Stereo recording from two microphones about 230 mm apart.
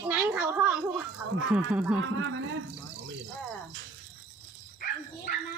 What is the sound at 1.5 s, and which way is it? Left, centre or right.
Speech, centre.